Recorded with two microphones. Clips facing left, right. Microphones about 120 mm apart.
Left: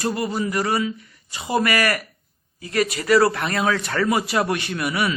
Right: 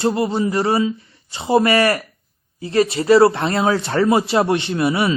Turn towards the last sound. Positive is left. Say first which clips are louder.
# right 5 dB
turn(degrees=-30)  # may be behind; listen again after turning